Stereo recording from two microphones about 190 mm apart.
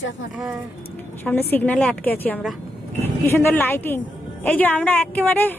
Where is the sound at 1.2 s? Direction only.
10° left (ahead or behind).